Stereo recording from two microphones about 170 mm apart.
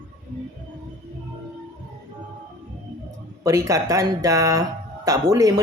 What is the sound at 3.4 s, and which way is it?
A man's voice, 20° right (ahead or behind).